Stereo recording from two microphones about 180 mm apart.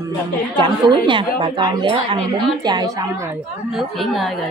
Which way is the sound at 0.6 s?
25° right (ahead or behind).